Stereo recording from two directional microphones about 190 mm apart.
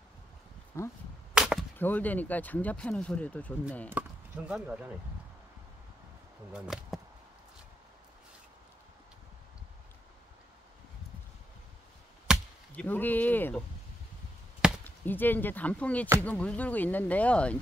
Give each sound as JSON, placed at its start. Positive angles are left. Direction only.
{"t": 0.7, "sound": "speech", "side_deg": 15}
{"t": 1.3, "sound": "chop", "side_deg": -5}
{"t": 1.8, "sound": "speech", "side_deg": 10}
{"t": 4.0, "sound": "chopping", "side_deg": -10}
{"t": 4.5, "sound": "speech", "side_deg": -5}
{"t": 6.5, "sound": "speech", "side_deg": -5}
{"t": 12.3, "sound": "chop", "side_deg": -5}
{"t": 12.7, "sound": "speech", "side_deg": 10}
{"t": 14.6, "sound": "chop", "side_deg": -5}
{"t": 15.0, "sound": "speech", "side_deg": 10}